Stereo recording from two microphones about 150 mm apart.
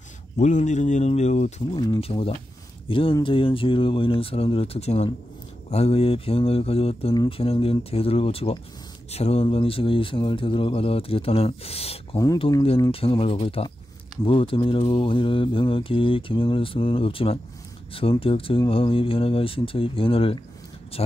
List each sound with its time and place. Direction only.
0.4 s speech: 55° left (ahead or behind)
1.8 s mantra: 35° left (ahead or behind)